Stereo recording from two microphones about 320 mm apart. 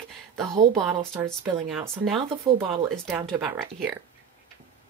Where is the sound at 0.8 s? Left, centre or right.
Centre.